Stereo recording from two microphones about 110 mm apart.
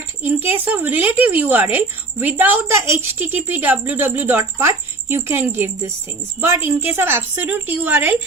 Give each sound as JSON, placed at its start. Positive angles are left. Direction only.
{"t": 0.2, "sound": "a woman's voice", "side_deg": -15}